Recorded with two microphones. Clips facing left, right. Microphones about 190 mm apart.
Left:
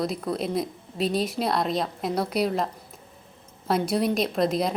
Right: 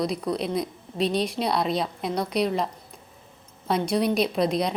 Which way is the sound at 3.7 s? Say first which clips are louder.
Even; 5° left (ahead or behind).